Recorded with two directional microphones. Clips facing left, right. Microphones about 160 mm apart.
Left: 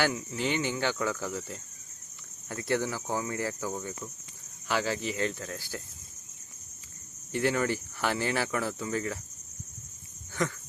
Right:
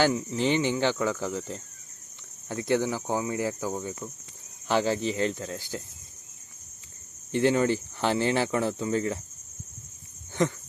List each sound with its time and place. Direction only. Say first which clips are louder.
0.0 s speech: right 5 dB; 25° right (ahead or behind)
7.3 s speech: right 5 dB; 25° right (ahead or behind)
10.4 s speech: right 5 dB; 25° right (ahead or behind)